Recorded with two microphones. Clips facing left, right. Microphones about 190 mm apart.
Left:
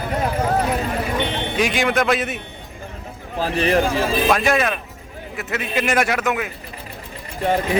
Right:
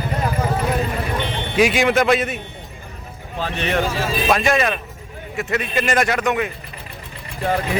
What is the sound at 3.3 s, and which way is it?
Speech, 35° left (ahead or behind).